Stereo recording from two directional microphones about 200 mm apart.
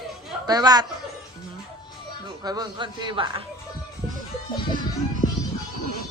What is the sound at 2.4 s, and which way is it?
Speech, 20° right (ahead or behind).